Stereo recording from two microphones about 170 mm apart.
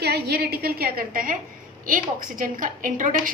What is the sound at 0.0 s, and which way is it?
A woman's voice, 70° right (ahead or behind).